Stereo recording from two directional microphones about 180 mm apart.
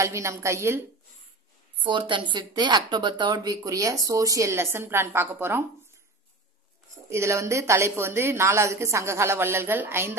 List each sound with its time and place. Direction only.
0.0 s a woman's voice: 15° right (ahead or behind)
1.8 s speech: 25° right (ahead or behind)
7.1 s a woman's voice: 15° right (ahead or behind)